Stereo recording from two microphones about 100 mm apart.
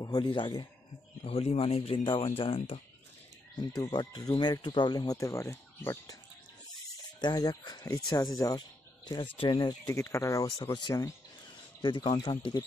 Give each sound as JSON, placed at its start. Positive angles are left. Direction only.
{"t": 0.0, "sound": "speech", "side_deg": 50}
{"t": 1.2, "sound": "speech", "side_deg": 85}
{"t": 3.7, "sound": "speech", "side_deg": 40}
{"t": 7.2, "sound": "speech", "side_deg": 45}
{"t": 9.1, "sound": "speech", "side_deg": 55}
{"t": 9.8, "sound": "speech", "side_deg": 30}